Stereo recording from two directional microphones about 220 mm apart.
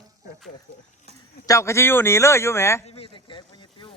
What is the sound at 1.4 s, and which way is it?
Speech, 15° left (ahead or behind).